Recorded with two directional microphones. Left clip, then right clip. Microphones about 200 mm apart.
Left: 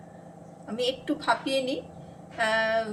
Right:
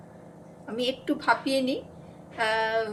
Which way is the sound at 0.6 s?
15° right (ahead or behind).